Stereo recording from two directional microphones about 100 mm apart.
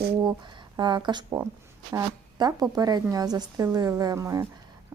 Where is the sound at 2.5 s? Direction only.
40° right (ahead or behind).